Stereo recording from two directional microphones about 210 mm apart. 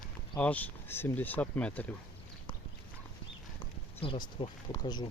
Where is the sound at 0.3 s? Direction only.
5° left (ahead or behind).